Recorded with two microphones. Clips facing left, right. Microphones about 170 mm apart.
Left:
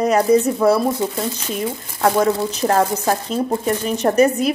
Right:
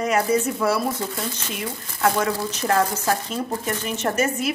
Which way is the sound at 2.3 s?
35° left (ahead or behind).